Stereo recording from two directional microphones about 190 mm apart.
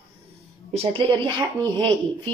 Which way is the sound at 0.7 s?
30° right (ahead or behind).